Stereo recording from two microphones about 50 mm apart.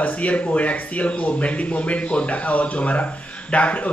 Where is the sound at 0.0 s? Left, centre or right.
Left.